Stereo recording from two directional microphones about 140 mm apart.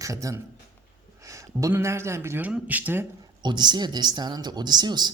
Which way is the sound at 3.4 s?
30° right (ahead or behind).